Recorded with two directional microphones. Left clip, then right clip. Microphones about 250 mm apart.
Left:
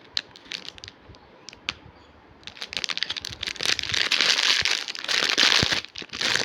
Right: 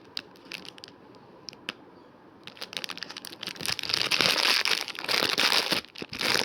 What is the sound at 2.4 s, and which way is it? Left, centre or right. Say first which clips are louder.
Computer keyboard: left 6 dB; left.